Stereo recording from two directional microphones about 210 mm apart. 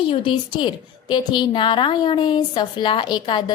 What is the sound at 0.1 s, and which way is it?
A woman's voice, 25° left (ahead or behind).